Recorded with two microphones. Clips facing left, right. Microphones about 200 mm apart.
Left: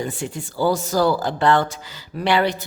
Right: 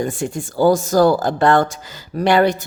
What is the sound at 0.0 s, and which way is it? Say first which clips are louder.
A woman's voice: right 5 dB; 45° right (ahead or behind).